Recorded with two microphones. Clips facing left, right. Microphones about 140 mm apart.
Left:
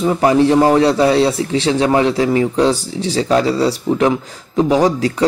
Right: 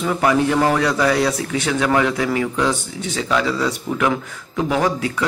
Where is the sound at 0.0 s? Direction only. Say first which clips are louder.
Left 5 dB; 30° left (ahead or behind).